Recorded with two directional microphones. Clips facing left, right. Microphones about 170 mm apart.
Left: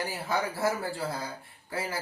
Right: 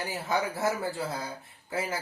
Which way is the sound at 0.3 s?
20° right (ahead or behind).